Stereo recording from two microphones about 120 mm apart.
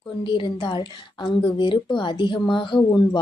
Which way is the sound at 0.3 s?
40° left (ahead or behind).